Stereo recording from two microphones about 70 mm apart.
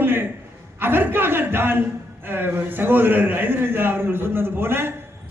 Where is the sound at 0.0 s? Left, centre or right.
Right.